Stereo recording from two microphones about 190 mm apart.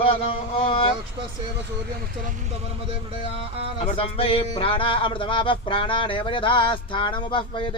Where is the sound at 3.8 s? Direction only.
30° left (ahead or behind).